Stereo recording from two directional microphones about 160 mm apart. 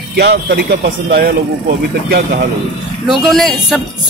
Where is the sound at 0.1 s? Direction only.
90° right.